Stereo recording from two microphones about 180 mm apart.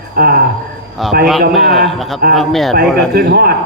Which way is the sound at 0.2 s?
55° right (ahead or behind).